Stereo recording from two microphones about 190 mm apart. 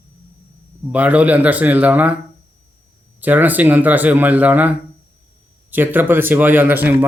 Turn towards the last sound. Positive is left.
turn(degrees=-10)  # may be behind; listen again after turning